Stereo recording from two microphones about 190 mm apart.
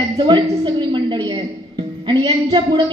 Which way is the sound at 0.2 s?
25° right (ahead or behind).